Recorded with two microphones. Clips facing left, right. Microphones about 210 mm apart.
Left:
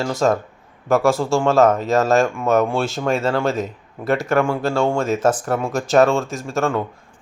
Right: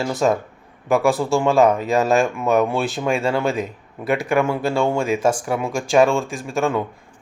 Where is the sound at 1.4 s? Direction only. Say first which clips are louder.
Left 1 dB; 15° right (ahead or behind).